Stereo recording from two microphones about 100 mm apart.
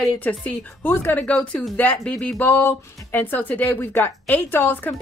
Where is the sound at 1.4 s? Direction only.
5° left (ahead or behind).